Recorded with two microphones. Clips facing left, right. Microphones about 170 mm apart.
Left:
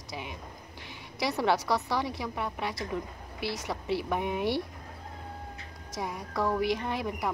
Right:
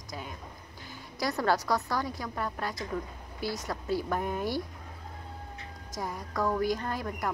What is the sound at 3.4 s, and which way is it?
Speech, 70° left (ahead or behind).